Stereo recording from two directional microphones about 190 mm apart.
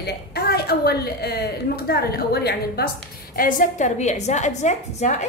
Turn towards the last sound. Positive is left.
turn(degrees=40)  # may be behind; listen again after turning